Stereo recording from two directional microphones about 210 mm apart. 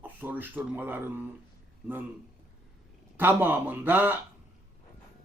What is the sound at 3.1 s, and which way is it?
Speech, 10° right (ahead or behind).